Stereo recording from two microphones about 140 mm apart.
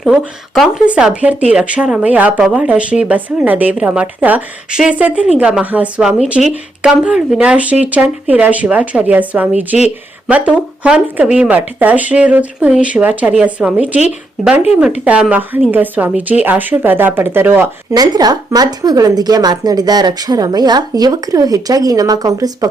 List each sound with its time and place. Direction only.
0.0 s speech: centre (ahead or behind)
17.9 s a woman's voice: 30° right (ahead or behind)